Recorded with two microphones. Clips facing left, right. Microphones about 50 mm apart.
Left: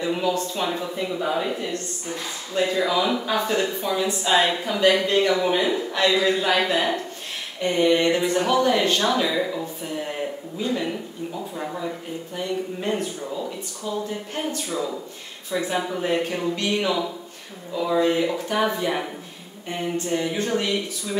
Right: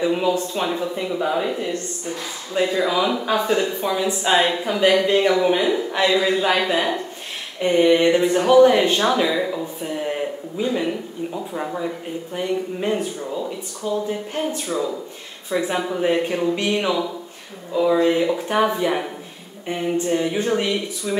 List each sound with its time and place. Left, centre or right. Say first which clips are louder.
0.0 s speech: right 4 dB; centre
0.7 s speech: right 3 dB; centre
3.3 s speech: right 3 dB; centre
4.4 s speech: even; centre
18.0 s speech: right 3 dB; centre